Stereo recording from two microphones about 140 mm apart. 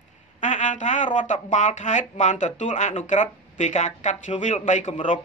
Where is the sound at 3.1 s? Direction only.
60° left (ahead or behind).